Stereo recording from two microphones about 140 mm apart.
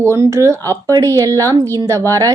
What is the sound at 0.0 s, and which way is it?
Speech, 20° right (ahead or behind).